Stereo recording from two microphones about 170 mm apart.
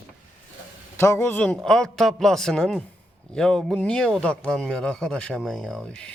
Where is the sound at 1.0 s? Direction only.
15° left (ahead or behind).